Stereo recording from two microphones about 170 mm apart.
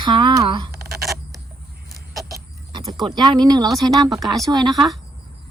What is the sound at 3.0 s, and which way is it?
Speech, 25° right (ahead or behind).